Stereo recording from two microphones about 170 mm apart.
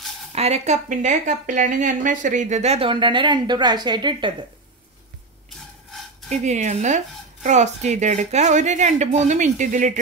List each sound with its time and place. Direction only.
0.3 s a woman's voice: 40° right (ahead or behind)
6.3 s a woman's voice: 45° right (ahead or behind)